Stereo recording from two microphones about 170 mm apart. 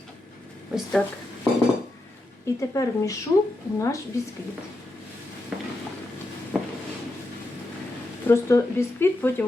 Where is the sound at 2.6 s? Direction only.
20° left (ahead or behind).